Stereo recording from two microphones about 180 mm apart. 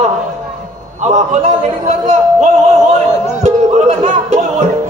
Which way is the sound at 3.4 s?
40° right (ahead or behind).